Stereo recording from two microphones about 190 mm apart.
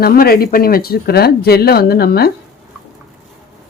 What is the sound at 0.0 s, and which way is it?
Speech, 50° left (ahead or behind).